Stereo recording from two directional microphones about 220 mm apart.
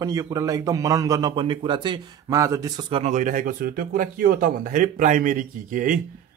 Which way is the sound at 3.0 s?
35° right (ahead or behind).